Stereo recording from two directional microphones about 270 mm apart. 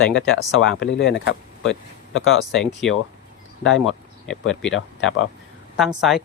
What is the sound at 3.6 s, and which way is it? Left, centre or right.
Speech, left.